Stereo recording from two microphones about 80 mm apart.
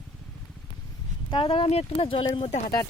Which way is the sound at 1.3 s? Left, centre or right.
Left.